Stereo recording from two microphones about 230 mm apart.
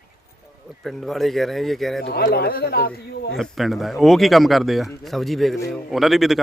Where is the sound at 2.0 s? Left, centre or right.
Left.